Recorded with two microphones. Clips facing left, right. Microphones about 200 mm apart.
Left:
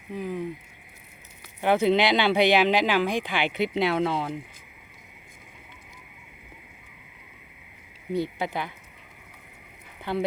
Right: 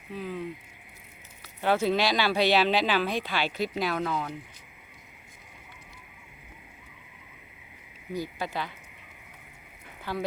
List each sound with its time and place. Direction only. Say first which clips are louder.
0.1 s a sound: left 4 dB; 15° left (ahead or behind)
1.6 s speech: left 4 dB; 15° left (ahead or behind)
8.1 s speech: left 5 dB; 25° left (ahead or behind)
10.0 s speech: left 5 dB; 20° left (ahead or behind)